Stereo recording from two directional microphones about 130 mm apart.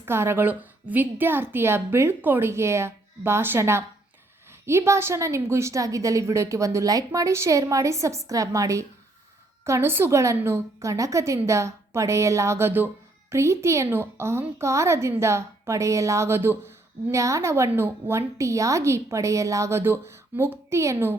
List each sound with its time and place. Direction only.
0.0 s a woman's voice: 20° right (ahead or behind)